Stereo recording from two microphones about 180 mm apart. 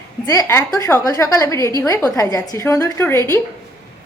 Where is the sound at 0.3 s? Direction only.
15° left (ahead or behind).